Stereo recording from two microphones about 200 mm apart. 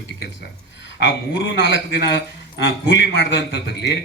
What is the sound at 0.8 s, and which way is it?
A man's voice, 60° left (ahead or behind).